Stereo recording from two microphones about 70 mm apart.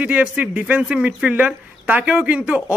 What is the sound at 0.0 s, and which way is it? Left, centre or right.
Speech, centre.